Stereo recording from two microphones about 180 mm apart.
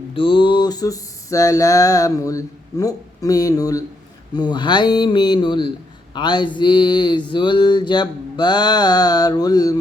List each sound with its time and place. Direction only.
0.1 s mantra: 30° left (ahead or behind)